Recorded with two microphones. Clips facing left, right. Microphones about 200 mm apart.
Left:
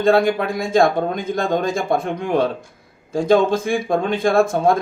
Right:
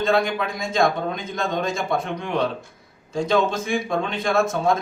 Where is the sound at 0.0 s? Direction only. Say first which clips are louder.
Left 5 dB; 50° left (ahead or behind).